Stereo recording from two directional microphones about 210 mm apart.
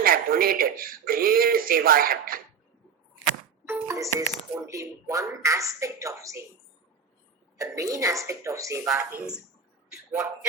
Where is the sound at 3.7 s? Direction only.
15° right (ahead or behind).